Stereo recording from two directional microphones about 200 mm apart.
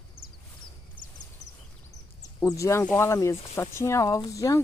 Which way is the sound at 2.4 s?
15° left (ahead or behind).